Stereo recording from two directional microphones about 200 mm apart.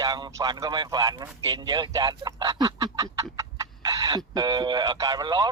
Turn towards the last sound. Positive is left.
turn(degrees=-20)  # may be behind; listen again after turning